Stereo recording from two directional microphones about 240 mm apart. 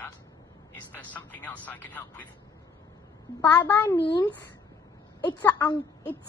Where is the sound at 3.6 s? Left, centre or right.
Centre.